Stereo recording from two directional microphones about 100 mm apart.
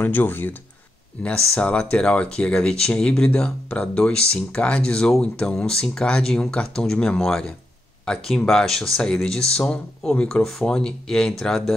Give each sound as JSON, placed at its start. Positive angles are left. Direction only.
{"t": 0.0, "sound": "speech", "side_deg": 20}